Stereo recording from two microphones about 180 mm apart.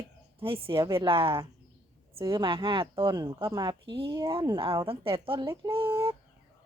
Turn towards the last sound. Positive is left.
turn(degrees=-15)  # may be behind; listen again after turning